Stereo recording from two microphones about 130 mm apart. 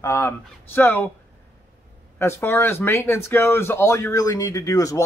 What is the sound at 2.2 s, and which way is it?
Speech, 20° left (ahead or behind).